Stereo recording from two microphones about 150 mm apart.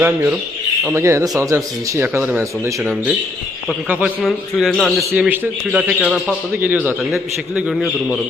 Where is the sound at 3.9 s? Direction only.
10° right (ahead or behind).